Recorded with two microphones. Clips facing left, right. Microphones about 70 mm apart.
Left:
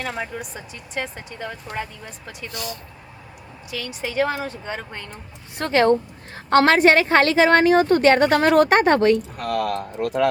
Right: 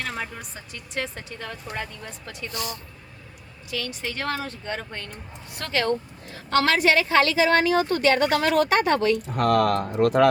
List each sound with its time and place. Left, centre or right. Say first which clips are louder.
0.0 s speech: left 3 dB; centre
3.7 s speech: left 1 dB; centre
5.1 s a woman's voice: left 3 dB; left
9.3 s speech: right 4 dB; right